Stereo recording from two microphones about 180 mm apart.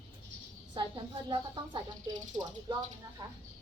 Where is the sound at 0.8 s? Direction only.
25° right (ahead or behind).